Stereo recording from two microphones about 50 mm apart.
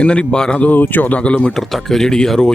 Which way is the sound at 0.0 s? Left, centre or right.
Left.